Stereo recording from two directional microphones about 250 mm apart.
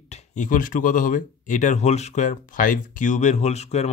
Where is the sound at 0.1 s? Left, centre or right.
Left.